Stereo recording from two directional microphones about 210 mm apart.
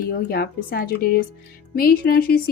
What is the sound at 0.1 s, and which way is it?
Speech, 45° left (ahead or behind).